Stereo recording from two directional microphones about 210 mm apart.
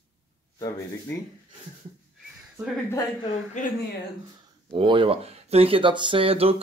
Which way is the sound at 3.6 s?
35° left (ahead or behind).